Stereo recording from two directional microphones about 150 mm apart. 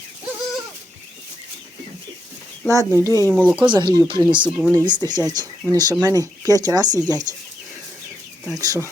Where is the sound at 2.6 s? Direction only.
20° right (ahead or behind).